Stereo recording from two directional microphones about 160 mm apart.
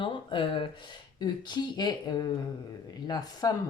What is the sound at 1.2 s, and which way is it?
Speech, 25° left (ahead or behind).